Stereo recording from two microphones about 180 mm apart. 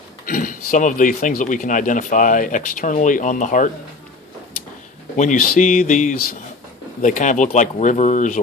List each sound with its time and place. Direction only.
0.3 s speech: 50° left (ahead or behind)
5.1 s speech: 45° left (ahead or behind)